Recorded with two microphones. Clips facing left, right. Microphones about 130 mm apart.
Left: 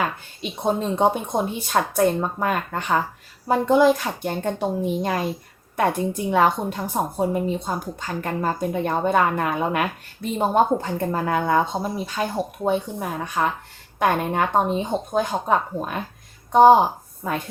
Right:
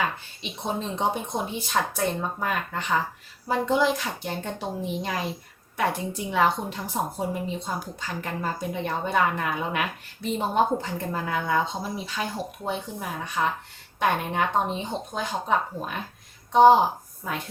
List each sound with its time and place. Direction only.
0.6 s a woman's voice: 50° left (ahead or behind)